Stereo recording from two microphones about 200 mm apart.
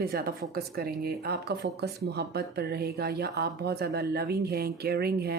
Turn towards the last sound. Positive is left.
turn(degrees=-50)  # may be behind; listen again after turning